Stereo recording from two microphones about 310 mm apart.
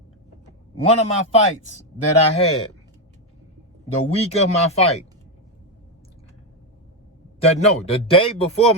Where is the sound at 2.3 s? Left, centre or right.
Centre.